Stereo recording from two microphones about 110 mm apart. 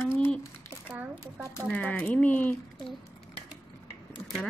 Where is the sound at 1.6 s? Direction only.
10° left (ahead or behind).